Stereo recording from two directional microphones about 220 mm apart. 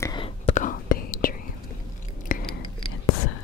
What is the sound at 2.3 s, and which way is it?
Chewing, 40° left (ahead or behind).